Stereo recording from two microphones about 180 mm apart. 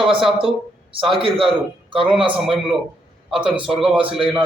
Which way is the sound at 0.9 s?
30° right (ahead or behind).